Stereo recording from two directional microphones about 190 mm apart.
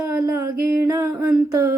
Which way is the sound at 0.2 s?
15° right (ahead or behind).